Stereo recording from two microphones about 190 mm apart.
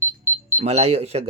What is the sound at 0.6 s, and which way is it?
Speech, 35° right (ahead or behind).